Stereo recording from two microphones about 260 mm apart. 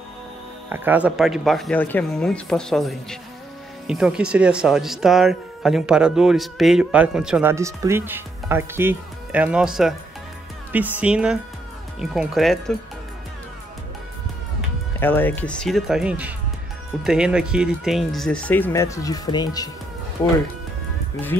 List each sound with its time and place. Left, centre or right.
0.7 s speech: centre
15.0 s speech: centre